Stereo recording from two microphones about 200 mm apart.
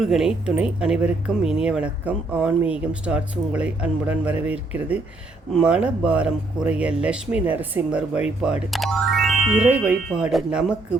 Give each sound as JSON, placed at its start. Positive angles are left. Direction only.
{"t": 0.0, "sound": "speech", "side_deg": -5}